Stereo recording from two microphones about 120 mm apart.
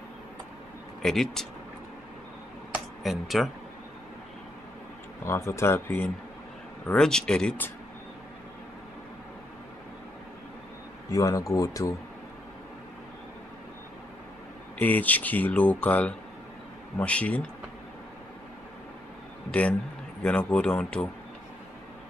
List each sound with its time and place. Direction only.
1.0 s speech: 5° left (ahead or behind)
3.0 s speech: centre (ahead or behind)
5.2 s speech: 20° left (ahead or behind)
7.0 s speech: 5° left (ahead or behind)
11.1 s speech: 30° left (ahead or behind)
14.8 s speech: 15° left (ahead or behind)
20.2 s speech: 10° left (ahead or behind)